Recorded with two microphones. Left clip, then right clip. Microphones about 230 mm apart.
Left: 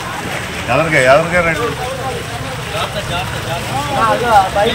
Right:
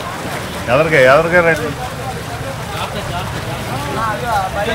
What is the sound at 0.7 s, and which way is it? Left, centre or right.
Speech, centre.